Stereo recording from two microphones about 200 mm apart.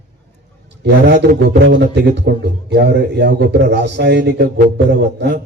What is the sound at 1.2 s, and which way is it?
A man's voice, 60° right (ahead or behind).